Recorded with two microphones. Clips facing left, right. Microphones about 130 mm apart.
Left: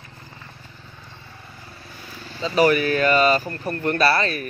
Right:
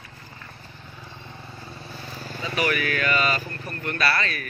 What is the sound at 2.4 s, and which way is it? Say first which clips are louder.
Speech: left 8 dB; 30° left (ahead or behind).